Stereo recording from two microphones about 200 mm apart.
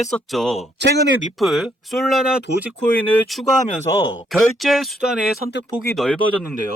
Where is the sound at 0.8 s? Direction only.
60° right (ahead or behind).